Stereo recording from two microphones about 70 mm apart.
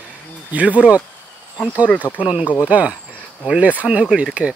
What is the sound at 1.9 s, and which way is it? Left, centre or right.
Speech, left.